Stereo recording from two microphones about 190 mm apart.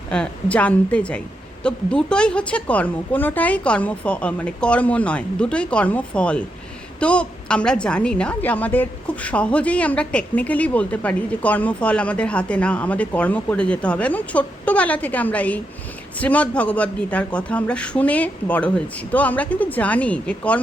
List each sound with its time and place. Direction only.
0.1 s a woman's voice: 5° left (ahead or behind)